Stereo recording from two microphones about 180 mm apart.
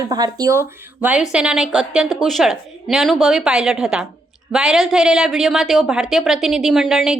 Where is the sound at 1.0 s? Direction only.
5° right (ahead or behind).